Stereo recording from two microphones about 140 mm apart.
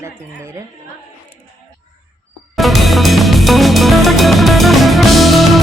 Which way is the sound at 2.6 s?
Centre (ahead or behind).